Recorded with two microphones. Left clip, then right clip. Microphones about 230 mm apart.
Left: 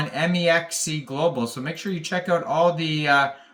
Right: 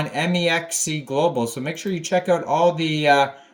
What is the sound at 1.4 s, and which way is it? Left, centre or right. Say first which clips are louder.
Speech: right 3 dB; centre.